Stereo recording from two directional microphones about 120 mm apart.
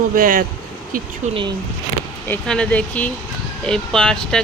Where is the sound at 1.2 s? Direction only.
90° right.